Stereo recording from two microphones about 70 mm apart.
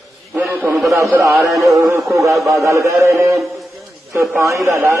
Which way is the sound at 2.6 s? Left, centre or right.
Right.